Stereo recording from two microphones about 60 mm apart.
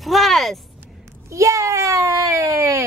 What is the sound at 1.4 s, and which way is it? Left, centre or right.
A child's voice, right.